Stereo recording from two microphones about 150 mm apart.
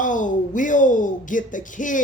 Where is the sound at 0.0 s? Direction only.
60° left (ahead or behind).